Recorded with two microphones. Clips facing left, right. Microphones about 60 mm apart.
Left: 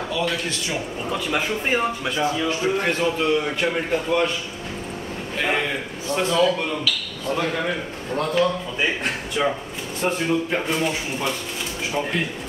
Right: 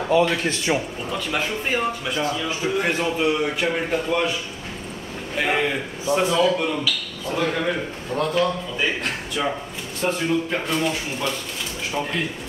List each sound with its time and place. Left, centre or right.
0.1 s a man's voice: right
1.1 s speech: centre
2.4 s a man's voice: centre
3.6 s a man's voice: centre
5.4 s a man's voice: centre
7.3 s a man's voice: centre